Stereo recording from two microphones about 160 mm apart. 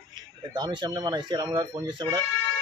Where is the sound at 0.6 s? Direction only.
25° right (ahead or behind).